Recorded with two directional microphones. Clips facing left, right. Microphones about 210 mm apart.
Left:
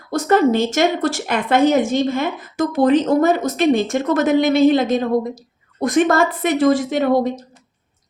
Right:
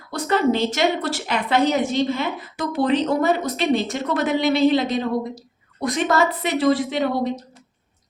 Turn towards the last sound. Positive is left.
turn(degrees=45)  # may be behind; listen again after turning